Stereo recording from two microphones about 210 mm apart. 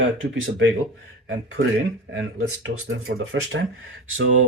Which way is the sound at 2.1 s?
80° right.